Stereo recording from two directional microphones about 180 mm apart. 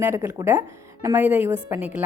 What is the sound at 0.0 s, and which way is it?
A woman's voice, 15° right (ahead or behind).